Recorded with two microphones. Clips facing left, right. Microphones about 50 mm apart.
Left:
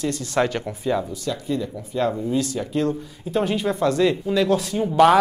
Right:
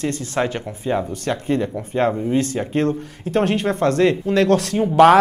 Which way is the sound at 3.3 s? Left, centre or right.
Right.